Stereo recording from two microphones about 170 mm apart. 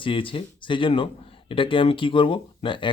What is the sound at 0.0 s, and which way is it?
Speech, 30° left (ahead or behind).